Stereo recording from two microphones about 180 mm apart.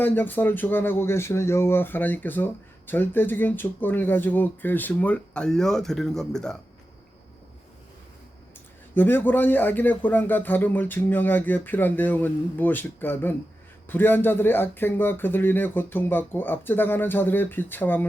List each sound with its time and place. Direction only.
0.0 s speech: 10° left (ahead or behind)
9.0 s speech: 10° left (ahead or behind)